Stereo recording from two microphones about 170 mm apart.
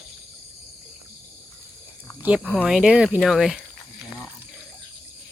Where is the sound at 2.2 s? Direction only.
10° right (ahead or behind).